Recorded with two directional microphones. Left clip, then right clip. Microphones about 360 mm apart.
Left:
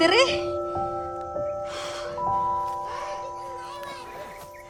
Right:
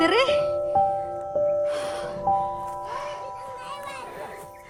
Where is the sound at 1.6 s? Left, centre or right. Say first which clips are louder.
Right 5 dB; centre.